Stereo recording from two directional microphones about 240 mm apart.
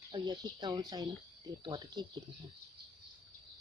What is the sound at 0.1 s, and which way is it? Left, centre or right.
Speech, centre.